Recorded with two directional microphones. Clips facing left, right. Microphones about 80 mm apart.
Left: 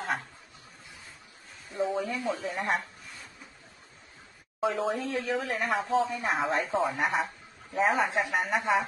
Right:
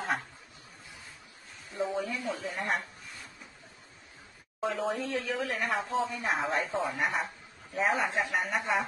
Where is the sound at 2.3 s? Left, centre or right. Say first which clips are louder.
Left 3 dB; centre.